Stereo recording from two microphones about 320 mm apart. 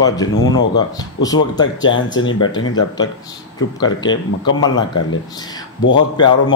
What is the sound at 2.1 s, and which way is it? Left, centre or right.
Speech, left.